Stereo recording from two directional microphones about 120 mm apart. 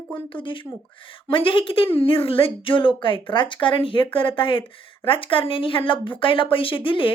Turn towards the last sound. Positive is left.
turn(degrees=45)  # may be behind; listen again after turning